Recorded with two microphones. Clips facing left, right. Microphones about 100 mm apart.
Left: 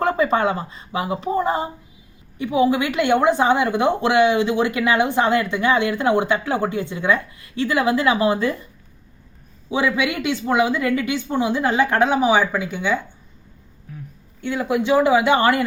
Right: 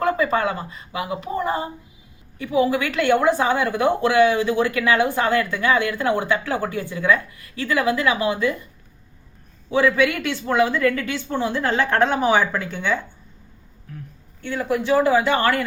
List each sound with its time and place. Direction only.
0.0 s a woman's voice: 30° left (ahead or behind)
9.6 s a woman's voice: 15° left (ahead or behind)
14.4 s a woman's voice: 20° left (ahead or behind)